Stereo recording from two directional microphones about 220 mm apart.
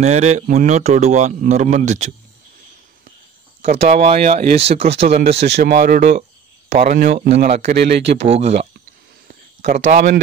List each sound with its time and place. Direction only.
0.0 s speech: 30° right (ahead or behind)
3.7 s speech: 30° right (ahead or behind)
5.5 s speech: 45° right (ahead or behind); by 7.7 s 30° right (ahead or behind)
7.7 s speech: 50° right (ahead or behind)
8.2 s speech: 30° right (ahead or behind)
9.3 s a sound: 30° right (ahead or behind)